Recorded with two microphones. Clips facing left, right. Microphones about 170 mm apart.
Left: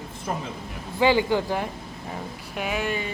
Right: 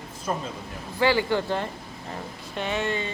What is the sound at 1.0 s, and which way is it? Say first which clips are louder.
Speech: left 2 dB; 15° left (ahead or behind).